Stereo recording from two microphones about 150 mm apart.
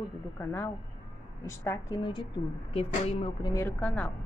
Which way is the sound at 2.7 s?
40° left (ahead or behind).